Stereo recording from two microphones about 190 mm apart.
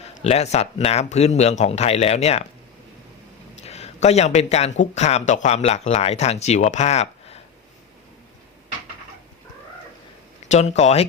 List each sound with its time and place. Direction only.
0.0 s speech: 35° left (ahead or behind)
3.6 s speech: 35° left (ahead or behind)
10.5 s speech: 35° left (ahead or behind)